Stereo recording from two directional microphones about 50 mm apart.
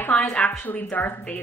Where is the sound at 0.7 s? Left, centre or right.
Left.